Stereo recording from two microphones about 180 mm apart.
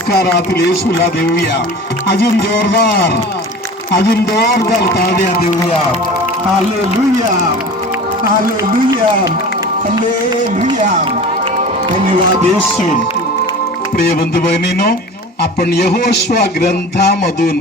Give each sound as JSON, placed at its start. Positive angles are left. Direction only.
{"t": 0.1, "sound": "music", "side_deg": 65}
{"t": 3.9, "sound": "music", "side_deg": 60}
{"t": 14.0, "sound": "music", "side_deg": 65}